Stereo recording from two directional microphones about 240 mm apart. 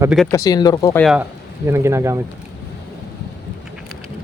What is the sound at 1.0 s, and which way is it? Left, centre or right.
Speech, centre.